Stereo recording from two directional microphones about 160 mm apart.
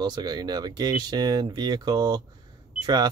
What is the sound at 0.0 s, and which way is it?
Speech, 25° right (ahead or behind).